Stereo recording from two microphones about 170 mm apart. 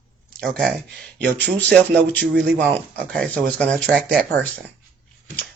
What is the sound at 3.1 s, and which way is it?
Speech, 5° left (ahead or behind).